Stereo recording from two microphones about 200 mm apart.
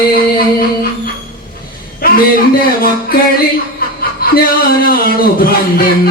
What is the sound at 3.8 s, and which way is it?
Chuckle, 45° left (ahead or behind).